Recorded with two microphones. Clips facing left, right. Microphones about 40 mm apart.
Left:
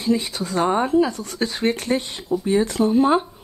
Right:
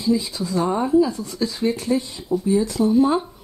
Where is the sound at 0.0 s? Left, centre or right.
Left.